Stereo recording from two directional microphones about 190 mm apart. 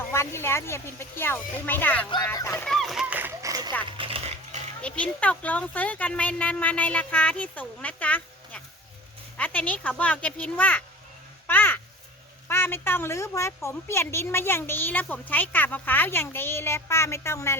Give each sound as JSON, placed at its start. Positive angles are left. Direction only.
{"t": 0.1, "sound": "a woman's voice", "side_deg": 15}
{"t": 2.0, "sound": "a sound", "side_deg": 20}
{"t": 3.9, "sound": "oink", "side_deg": -30}
{"t": 4.8, "sound": "a woman's voice", "side_deg": 5}
{"t": 11.4, "sound": "a sound", "side_deg": 10}
{"t": 12.5, "sound": "a woman's voice", "side_deg": 10}